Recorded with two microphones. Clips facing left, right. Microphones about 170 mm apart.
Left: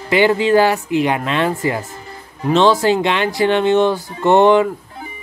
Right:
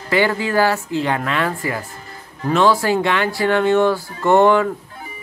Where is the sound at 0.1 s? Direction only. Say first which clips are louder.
Left 5 dB; 20° left (ahead or behind).